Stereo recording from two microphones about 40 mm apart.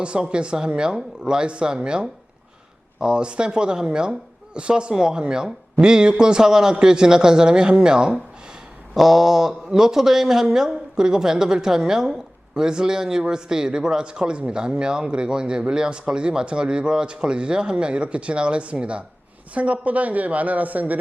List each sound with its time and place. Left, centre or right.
0.0 s speech: right
1.4 s speech: right
9.0 s speech: centre; by 21.0 s right